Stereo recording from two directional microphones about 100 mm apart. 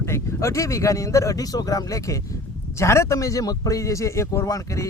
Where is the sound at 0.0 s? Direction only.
25° left (ahead or behind).